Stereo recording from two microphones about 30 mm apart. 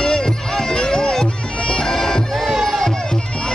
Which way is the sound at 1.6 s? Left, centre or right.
Left.